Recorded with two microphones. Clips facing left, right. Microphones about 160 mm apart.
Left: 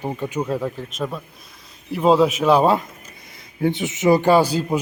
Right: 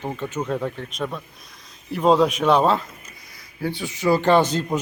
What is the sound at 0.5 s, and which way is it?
Mantra, centre (ahead or behind).